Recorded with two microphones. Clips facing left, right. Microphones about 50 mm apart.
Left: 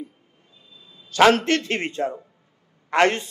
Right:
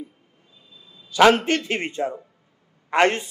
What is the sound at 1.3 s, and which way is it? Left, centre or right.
Speech, right.